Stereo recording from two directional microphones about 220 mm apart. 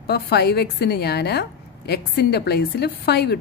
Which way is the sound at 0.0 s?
45° left (ahead or behind).